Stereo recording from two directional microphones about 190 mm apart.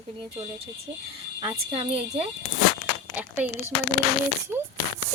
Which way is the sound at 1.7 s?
30° right (ahead or behind).